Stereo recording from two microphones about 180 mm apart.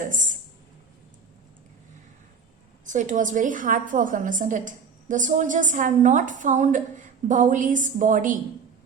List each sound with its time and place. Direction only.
0.0 s a woman's voice: 45° right (ahead or behind)
2.8 s a woman's voice: 45° right (ahead or behind)